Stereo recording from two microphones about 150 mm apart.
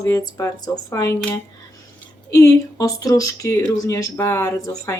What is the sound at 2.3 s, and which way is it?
Speech, 25° left (ahead or behind).